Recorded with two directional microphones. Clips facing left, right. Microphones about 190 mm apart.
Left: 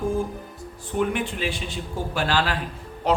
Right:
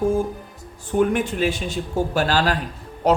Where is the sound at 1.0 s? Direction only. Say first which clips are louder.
Right 5 dB; 45° right (ahead or behind).